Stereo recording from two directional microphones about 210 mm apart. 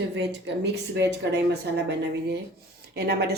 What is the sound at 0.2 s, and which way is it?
Speech, 55° right (ahead or behind).